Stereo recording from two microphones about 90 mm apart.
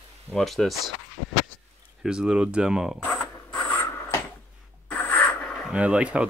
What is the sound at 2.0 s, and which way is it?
Speech, 10° right (ahead or behind).